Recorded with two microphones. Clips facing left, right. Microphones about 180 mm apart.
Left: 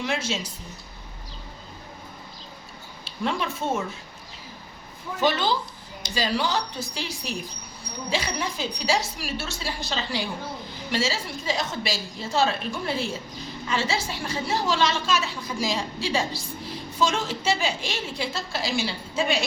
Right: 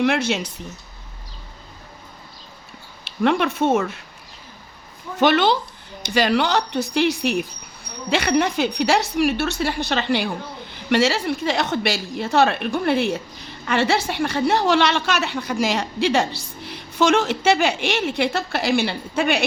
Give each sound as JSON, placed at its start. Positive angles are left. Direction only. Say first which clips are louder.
{"t": 0.0, "sound": "a woman's voice", "louder": "right 8 dB", "side_deg": -65}
{"t": 3.0, "sound": "speech", "louder": "right 9 dB", "side_deg": -70}
{"t": 5.2, "sound": "a woman's voice", "louder": "right 7 dB", "side_deg": -70}